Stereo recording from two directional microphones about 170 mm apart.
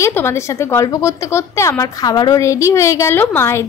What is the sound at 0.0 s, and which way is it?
A woman's voice, 15° left (ahead or behind).